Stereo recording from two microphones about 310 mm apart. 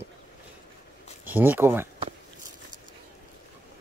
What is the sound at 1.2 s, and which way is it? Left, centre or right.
Speech, centre.